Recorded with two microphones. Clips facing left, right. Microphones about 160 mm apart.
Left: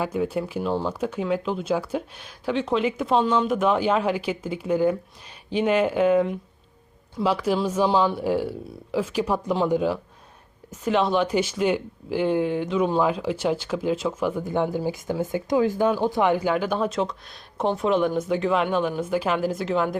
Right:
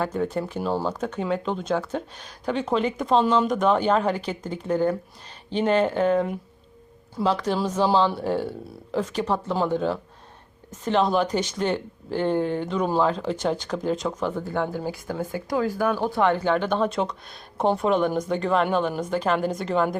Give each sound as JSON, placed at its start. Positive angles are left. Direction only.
{"t": 0.0, "sound": "speech", "side_deg": 10}